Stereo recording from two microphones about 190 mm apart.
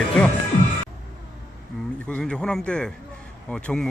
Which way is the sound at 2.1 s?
5° left (ahead or behind).